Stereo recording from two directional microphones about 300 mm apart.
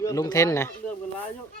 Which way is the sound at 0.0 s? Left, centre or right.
Centre.